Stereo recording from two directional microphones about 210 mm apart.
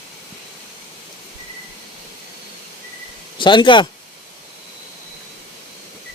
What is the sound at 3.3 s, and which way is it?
Speech, 20° left (ahead or behind).